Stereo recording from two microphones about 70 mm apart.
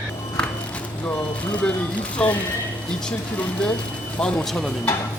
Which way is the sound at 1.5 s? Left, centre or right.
Centre.